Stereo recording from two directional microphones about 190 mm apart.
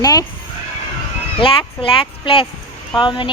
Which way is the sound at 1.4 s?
30° left (ahead or behind).